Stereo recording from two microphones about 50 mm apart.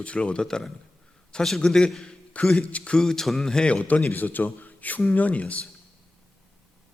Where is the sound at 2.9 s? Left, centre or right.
Centre; by 4.0 s left.